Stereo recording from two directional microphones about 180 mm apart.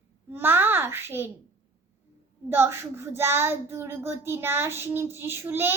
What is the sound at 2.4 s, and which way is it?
A child's voice, 15° right (ahead or behind).